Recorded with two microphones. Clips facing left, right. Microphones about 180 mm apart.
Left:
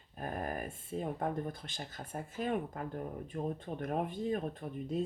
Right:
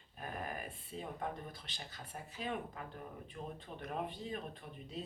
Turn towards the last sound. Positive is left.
turn(degrees=45)  # may be behind; listen again after turning